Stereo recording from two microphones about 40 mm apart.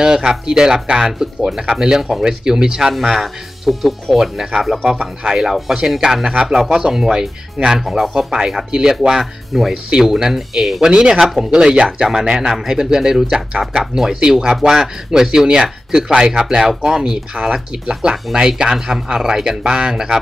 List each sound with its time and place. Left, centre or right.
0.0 s speech: centre
7.8 s speech: centre
9.8 s speech: centre
10.9 s speech: right
12.0 s speech: centre